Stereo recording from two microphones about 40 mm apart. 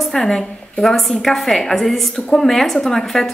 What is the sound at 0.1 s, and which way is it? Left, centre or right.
A woman's voice, centre.